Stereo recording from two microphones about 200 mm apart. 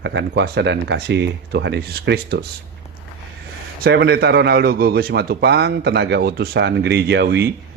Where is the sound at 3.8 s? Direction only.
55° right (ahead or behind).